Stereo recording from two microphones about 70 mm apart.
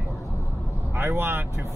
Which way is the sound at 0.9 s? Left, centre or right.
Right.